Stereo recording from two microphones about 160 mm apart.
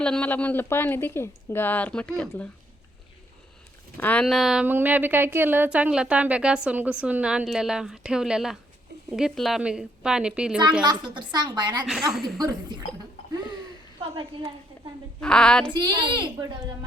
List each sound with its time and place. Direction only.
0.0 s speech: 5° left (ahead or behind)
3.9 s speech: 10° left (ahead or behind); by 10.6 s 5° right (ahead or behind)
10.8 s a woman's voice: 30° right (ahead or behind)
14.2 s a woman's voice: 30° right (ahead or behind)
15.2 s speech: 5° left (ahead or behind)
15.7 s a woman's voice: 25° right (ahead or behind)